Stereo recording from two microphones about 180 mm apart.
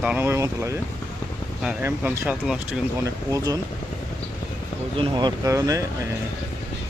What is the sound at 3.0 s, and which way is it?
Speech, 20° right (ahead or behind).